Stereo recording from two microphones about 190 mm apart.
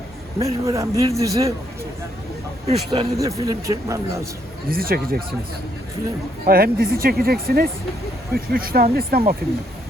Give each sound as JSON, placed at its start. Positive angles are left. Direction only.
{"t": 0.4, "sound": "speech", "side_deg": -15}
{"t": 2.6, "sound": "speech", "side_deg": -30}
{"t": 3.2, "sound": "speech", "side_deg": -15}
{"t": 4.7, "sound": "speech", "side_deg": -50}
{"t": 6.4, "sound": "speech", "side_deg": -50}